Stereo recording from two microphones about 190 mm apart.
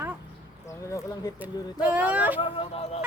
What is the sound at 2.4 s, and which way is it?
Speech, 30° left (ahead or behind).